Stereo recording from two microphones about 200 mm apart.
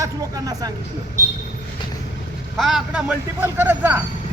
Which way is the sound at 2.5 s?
Centre (ahead or behind).